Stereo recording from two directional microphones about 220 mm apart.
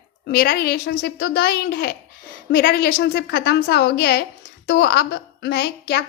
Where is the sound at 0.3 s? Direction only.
45° left (ahead or behind).